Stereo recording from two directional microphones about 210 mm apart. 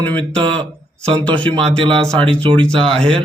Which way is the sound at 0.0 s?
5° left (ahead or behind).